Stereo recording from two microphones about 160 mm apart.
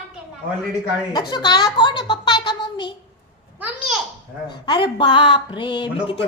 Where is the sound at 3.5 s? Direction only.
10° right (ahead or behind).